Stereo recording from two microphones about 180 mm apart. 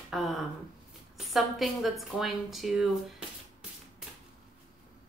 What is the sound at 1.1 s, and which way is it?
A woman's voice, centre (ahead or behind).